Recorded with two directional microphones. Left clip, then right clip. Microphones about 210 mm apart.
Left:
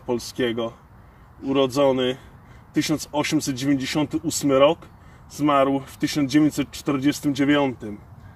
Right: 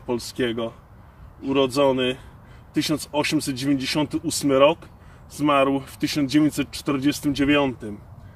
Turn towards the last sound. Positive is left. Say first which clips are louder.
# even
turn(degrees=15)  # may be behind; listen again after turning